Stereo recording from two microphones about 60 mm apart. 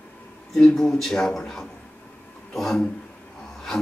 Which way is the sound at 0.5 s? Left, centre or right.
Centre.